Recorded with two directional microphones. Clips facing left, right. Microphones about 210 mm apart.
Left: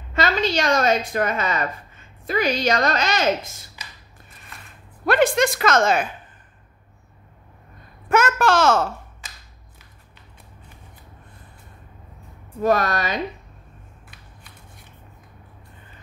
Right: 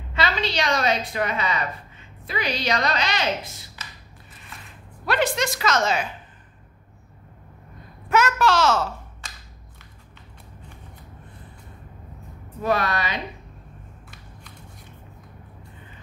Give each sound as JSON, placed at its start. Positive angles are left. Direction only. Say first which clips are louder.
{"t": 0.1, "sound": "a woman's voice", "louder": "left 4 dB", "side_deg": 45}
{"t": 3.8, "sound": "a sound", "louder": "even", "side_deg": 15}
{"t": 5.0, "sound": "a woman's voice", "louder": "left 5 dB", "side_deg": 50}
{"t": 8.1, "sound": "a woman's voice", "louder": "left 2 dB", "side_deg": 50}
{"t": 12.6, "sound": "a woman's voice", "louder": "left 4 dB", "side_deg": 45}